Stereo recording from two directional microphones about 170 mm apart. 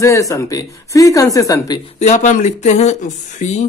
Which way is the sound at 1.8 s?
45° left (ahead or behind).